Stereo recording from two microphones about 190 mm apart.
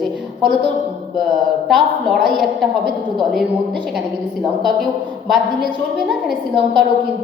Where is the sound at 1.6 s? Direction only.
Centre (ahead or behind).